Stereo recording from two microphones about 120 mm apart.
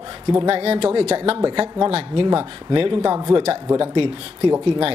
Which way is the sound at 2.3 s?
45° right (ahead or behind).